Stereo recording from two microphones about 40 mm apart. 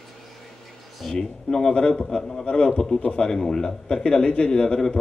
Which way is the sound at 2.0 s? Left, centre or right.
Centre.